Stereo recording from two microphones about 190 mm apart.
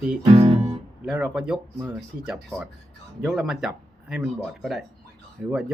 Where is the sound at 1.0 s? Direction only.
5° right (ahead or behind).